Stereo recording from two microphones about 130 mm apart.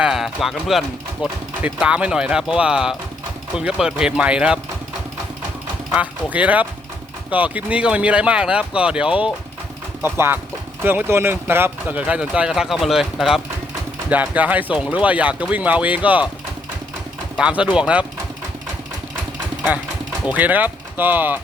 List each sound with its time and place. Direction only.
0.0 s speech: 5° right (ahead or behind)
6.3 s speech: 10° right (ahead or behind)
10.0 s speech: 20° right (ahead or behind)
17.3 s speech: 10° right (ahead or behind)
20.2 s speech: 10° right (ahead or behind)